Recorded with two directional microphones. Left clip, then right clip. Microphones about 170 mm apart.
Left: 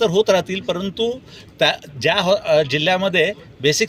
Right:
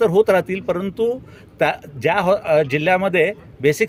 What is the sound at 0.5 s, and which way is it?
Speech, 5° right (ahead or behind).